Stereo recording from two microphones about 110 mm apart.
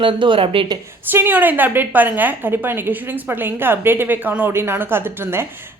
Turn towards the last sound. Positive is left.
turn(degrees=-20)  # may be behind; listen again after turning